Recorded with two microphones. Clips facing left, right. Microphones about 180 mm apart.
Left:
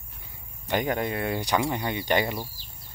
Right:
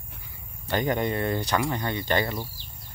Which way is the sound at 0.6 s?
10° left (ahead or behind).